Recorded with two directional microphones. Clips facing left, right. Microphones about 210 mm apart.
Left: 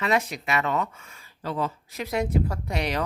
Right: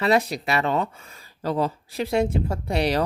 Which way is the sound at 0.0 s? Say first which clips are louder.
Right 5 dB; 35° right (ahead or behind).